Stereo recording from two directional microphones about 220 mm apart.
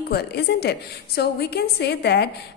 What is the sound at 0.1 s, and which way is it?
A woman's voice, 45° left (ahead or behind).